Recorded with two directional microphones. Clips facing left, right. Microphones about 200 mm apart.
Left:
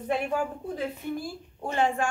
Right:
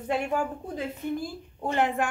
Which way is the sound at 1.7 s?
20° right (ahead or behind).